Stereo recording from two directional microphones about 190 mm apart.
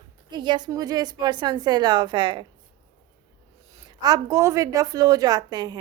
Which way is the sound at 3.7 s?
20° right (ahead or behind).